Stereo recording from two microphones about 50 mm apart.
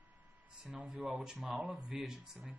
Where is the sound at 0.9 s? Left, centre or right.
Right.